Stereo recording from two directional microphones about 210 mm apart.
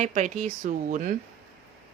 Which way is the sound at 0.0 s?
35° right (ahead or behind).